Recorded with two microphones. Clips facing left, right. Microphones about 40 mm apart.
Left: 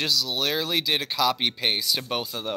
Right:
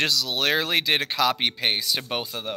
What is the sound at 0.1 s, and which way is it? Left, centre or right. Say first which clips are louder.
Speech: even; right.